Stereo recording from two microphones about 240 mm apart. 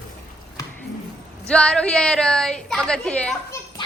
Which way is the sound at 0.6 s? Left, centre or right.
Centre.